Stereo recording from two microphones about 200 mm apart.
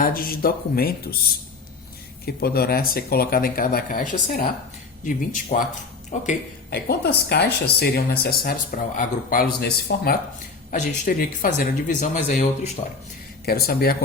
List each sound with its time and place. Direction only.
0.0 s speech: 45° left (ahead or behind)
2.2 s speech: 50° left (ahead or behind)
6.7 s speech: 50° left (ahead or behind)
8.7 s speech: 40° left (ahead or behind)
9.6 s speech: 55° left (ahead or behind)
10.7 s speech: 40° left (ahead or behind)